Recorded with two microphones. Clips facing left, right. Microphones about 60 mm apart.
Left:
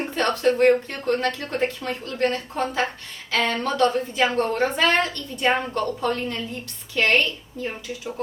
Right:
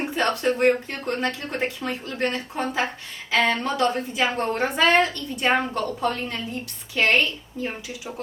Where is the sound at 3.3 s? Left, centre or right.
Right.